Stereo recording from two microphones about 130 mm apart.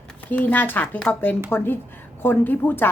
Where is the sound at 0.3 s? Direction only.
15° left (ahead or behind).